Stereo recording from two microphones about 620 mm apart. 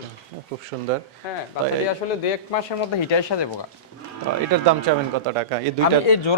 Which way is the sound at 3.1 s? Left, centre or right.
Left.